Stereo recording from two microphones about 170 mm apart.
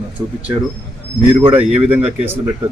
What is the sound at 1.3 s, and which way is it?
Speech, 30° right (ahead or behind).